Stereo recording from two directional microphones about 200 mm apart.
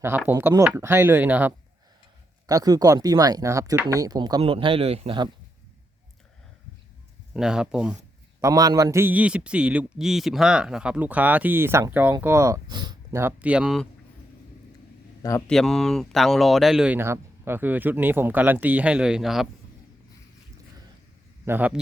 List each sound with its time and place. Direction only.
0.3 s a man's voice: 10° right (ahead or behind)
7.3 s speech: 5° right (ahead or behind)
8.4 s a man's voice: 15° right (ahead or behind)
15.2 s speech: 15° left (ahead or behind)
15.4 s speech: centre (ahead or behind)
21.4 s a man's voice: 10° right (ahead or behind)